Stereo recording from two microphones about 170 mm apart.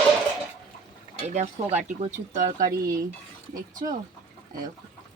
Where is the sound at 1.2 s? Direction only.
40° right (ahead or behind).